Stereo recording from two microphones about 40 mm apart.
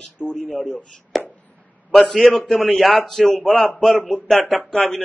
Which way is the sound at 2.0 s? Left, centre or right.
Centre.